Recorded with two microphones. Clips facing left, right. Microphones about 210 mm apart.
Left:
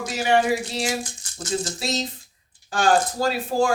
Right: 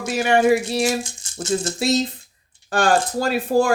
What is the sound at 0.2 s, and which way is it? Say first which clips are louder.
Speech: right 4 dB; 60° right (ahead or behind).